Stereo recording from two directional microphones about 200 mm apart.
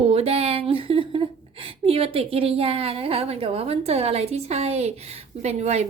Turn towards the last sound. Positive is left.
turn(degrees=-35)  # may be behind; listen again after turning